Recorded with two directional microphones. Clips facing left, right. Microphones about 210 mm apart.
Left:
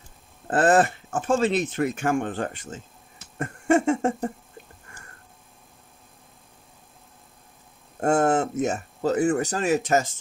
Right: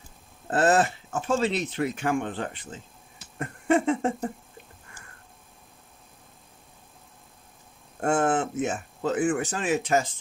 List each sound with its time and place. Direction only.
0.5 s speech: 50° left (ahead or behind)
3.3 s a sound: 45° left (ahead or behind)
8.0 s speech: 40° left (ahead or behind)